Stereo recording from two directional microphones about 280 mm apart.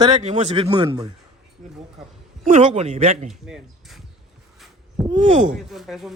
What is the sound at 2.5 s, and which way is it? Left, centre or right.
Speech, right.